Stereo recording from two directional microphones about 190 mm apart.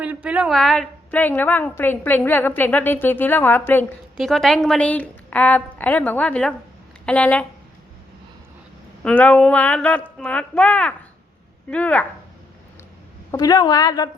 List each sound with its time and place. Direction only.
0.0 s a woman's voice: 5° right (ahead or behind)
9.0 s a woman's voice: 10° left (ahead or behind)
13.3 s a woman's voice: 20° left (ahead or behind)